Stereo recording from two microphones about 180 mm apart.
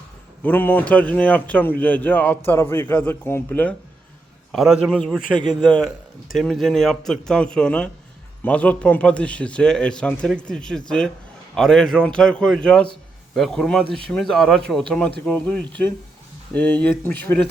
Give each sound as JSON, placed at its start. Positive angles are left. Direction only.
{"t": 0.4, "sound": "speech", "side_deg": 10}
{"t": 4.5, "sound": "speech", "side_deg": 0}
{"t": 5.4, "sound": "a man's voice", "side_deg": -25}
{"t": 6.3, "sound": "speech", "side_deg": 0}